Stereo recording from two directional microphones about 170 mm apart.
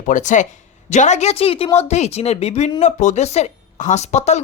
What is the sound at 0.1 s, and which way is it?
Speech, 45° left (ahead or behind).